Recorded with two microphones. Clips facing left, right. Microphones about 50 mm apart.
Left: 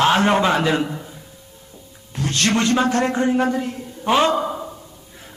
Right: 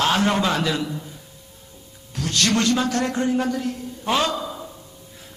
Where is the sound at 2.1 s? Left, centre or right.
Left.